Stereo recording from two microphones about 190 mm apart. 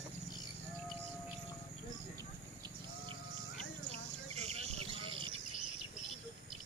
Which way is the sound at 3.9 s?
35° right (ahead or behind).